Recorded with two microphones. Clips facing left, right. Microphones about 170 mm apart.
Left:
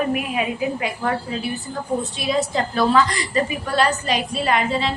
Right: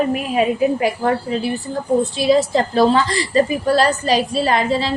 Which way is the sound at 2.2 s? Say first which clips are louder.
Right 6 dB; 35° right (ahead or behind).